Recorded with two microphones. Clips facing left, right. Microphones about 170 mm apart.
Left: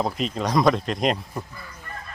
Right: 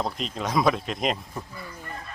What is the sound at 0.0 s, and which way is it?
Speech, centre (ahead or behind).